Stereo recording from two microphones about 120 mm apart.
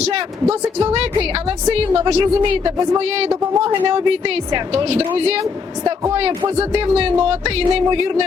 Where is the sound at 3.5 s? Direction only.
30° right (ahead or behind).